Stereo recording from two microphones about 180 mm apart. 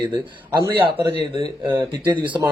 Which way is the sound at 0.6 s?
20° right (ahead or behind).